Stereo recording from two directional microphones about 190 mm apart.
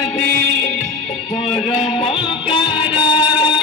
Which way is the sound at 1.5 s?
Centre (ahead or behind).